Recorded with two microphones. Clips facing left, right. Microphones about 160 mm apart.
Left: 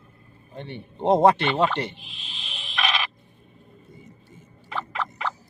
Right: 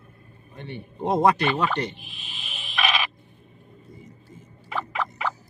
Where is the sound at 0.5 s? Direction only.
30° left (ahead or behind).